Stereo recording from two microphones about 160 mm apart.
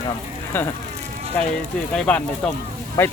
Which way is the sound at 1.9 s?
5° left (ahead or behind).